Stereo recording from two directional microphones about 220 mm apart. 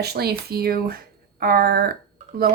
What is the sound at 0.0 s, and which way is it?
Speech, 45° right (ahead or behind).